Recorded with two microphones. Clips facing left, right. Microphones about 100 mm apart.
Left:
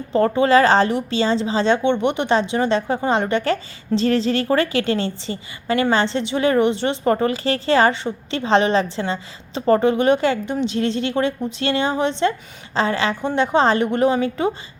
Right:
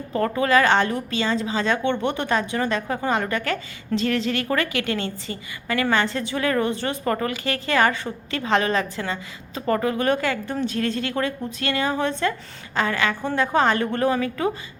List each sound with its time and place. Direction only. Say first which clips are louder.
0.1 s speech: left 5 dB; 30° left (ahead or behind)